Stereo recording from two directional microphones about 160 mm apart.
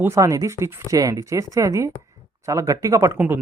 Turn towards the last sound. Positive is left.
turn(degrees=-15)  # may be behind; listen again after turning